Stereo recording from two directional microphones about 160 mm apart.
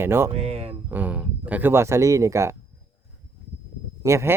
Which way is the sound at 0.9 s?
10° right (ahead or behind).